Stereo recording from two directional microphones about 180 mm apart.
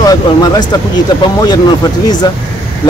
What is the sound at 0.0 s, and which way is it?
Speech, 20° left (ahead or behind).